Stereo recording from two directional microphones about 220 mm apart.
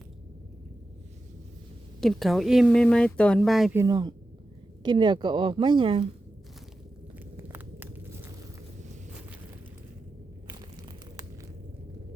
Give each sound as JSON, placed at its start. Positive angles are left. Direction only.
{"t": 2.0, "sound": "speech", "side_deg": 0}
{"t": 3.8, "sound": "speech", "side_deg": -15}
{"t": 7.3, "sound": "walk", "side_deg": -10}
{"t": 10.4, "sound": "a sound", "side_deg": -20}